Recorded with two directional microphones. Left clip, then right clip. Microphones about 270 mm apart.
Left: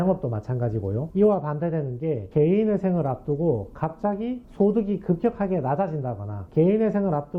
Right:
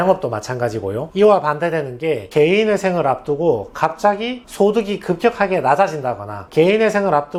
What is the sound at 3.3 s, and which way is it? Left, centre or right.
Speech, right.